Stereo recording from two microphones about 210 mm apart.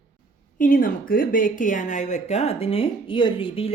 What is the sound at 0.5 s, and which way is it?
Speech, 40° left (ahead or behind).